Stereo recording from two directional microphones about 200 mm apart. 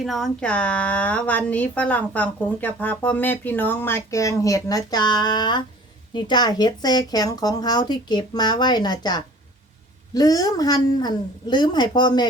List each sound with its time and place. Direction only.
0.0 s a woman's voice: centre (ahead or behind); by 12.3 s 20° left (ahead or behind)